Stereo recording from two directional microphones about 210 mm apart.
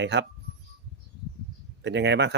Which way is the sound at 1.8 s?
55° right (ahead or behind).